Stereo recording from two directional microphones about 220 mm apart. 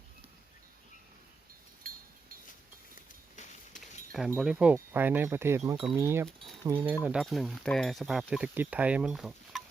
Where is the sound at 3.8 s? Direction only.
Centre (ahead or behind).